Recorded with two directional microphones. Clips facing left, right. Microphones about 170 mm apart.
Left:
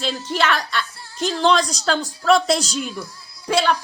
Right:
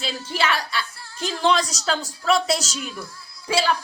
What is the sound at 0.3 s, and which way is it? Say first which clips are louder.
Speech: left 2 dB; 10° right (ahead or behind).